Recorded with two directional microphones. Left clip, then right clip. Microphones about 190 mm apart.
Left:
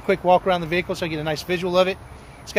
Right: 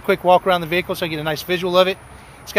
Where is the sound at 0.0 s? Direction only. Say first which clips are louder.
Right 3 dB; 40° right (ahead or behind).